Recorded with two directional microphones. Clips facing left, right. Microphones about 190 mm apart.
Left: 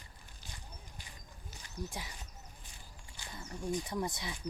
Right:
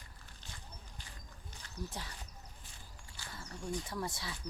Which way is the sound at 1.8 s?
10° left (ahead or behind).